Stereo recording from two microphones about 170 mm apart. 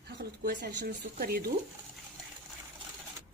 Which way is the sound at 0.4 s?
85° right.